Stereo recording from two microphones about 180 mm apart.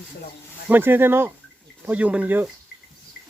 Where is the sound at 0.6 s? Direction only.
10° right (ahead or behind).